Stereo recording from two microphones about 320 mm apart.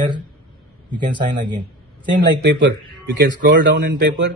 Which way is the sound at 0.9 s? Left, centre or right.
Centre.